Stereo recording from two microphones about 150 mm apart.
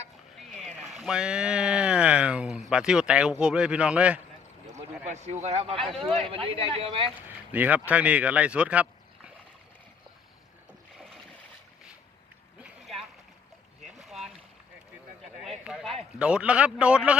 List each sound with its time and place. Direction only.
0.3 s speech: centre (ahead or behind)
4.6 s a man's voice: 50° right (ahead or behind)
7.3 s speech: 10° right (ahead or behind)
12.5 s a sound: 5° right (ahead or behind)
14.0 s boat: centre (ahead or behind)
15.4 s clip-clop: centre (ahead or behind)
16.1 s a man's voice: 5° right (ahead or behind)